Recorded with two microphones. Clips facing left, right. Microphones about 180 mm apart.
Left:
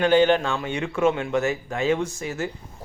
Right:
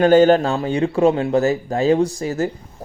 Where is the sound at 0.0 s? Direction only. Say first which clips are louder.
Right 6 dB; 40° right (ahead or behind).